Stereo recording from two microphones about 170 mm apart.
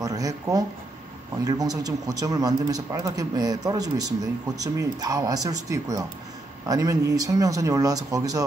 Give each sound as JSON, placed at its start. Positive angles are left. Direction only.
{"t": 0.0, "sound": "a man's voice", "side_deg": -20}